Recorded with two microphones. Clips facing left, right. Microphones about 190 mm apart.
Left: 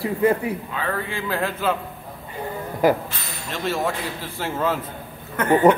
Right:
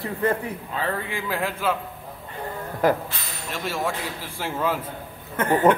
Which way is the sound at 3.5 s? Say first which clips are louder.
Left 3 dB; 10° right (ahead or behind).